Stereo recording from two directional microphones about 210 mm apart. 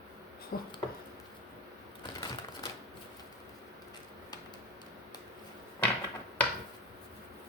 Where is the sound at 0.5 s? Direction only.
45° left (ahead or behind).